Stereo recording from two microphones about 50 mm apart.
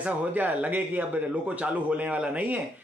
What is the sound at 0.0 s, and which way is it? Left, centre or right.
A man's voice, right.